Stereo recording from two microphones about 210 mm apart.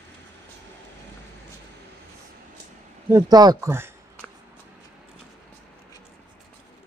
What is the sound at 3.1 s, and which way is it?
Speech, 20° right (ahead or behind).